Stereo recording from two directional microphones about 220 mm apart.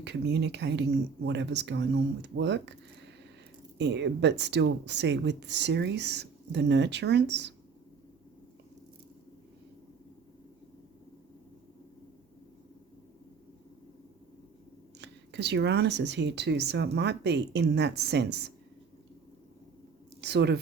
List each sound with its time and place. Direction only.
0.0 s speech: 50° right (ahead or behind)
3.8 s speech: 50° right (ahead or behind)
14.9 s speech: 50° right (ahead or behind)
20.2 s speech: 50° right (ahead or behind)